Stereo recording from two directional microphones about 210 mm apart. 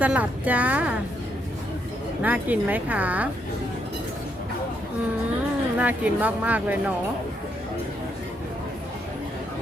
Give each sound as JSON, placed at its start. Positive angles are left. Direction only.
{"t": 0.0, "sound": "speech", "side_deg": -5}
{"t": 2.2, "sound": "speech", "side_deg": -10}
{"t": 5.7, "sound": "speech", "side_deg": -5}